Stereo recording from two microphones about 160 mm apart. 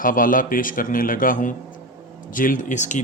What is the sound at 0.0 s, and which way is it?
A man's voice, 60° left (ahead or behind).